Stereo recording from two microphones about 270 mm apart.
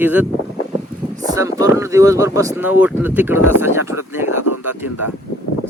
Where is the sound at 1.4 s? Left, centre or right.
Centre.